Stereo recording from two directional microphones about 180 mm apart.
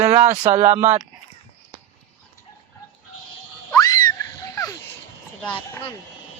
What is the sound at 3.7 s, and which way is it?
Screaming, 20° left (ahead or behind).